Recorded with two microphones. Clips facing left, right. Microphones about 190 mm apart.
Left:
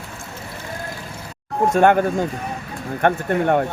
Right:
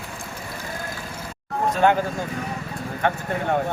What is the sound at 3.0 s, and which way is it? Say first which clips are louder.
Speech: left 6 dB; 60° left (ahead or behind).